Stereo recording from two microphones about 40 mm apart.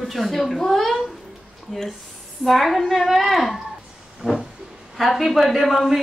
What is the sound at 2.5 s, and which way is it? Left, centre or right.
Speech, centre.